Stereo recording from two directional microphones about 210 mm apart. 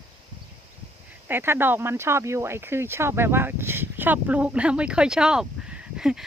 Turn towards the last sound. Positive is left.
turn(degrees=-5)  # may be behind; listen again after turning